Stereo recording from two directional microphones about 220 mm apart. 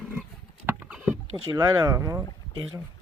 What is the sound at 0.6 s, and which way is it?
Rowboat, 5° right (ahead or behind).